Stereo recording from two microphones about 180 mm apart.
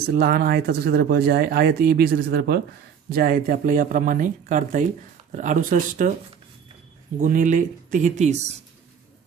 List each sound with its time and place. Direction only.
0.0 s speech: 60° right (ahead or behind)
7.2 s speech: 45° right (ahead or behind)